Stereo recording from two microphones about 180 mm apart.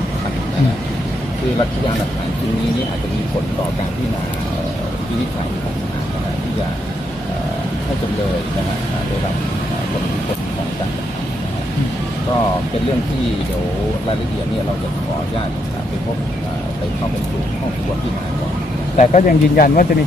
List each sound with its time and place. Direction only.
18.9 s speech: 45° left (ahead or behind)